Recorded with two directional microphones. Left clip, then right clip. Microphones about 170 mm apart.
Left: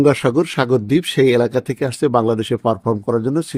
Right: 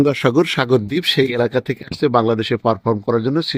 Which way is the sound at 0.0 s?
Centre (ahead or behind).